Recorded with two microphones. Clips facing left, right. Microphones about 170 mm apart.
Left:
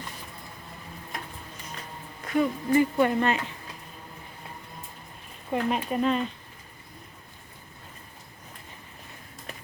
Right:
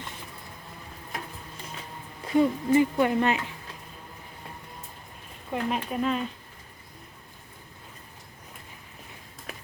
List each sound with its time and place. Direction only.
2.2 s speech: 25° right (ahead or behind)
3.0 s speech: 10° right (ahead or behind)
5.5 s speech: centre (ahead or behind)